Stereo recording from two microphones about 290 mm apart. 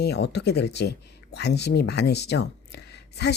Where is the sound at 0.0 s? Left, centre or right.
Left.